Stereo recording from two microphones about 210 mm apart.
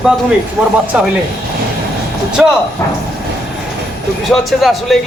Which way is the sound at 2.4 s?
5° right (ahead or behind).